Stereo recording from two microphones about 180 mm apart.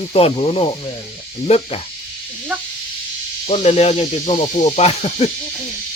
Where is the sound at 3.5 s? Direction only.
40° left (ahead or behind).